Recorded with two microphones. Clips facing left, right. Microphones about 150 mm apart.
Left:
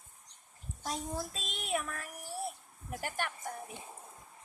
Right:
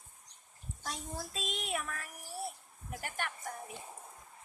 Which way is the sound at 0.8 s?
40° left (ahead or behind).